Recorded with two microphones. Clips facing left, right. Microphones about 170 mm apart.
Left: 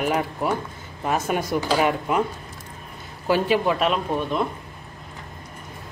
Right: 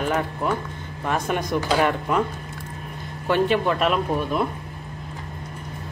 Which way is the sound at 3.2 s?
5° left (ahead or behind).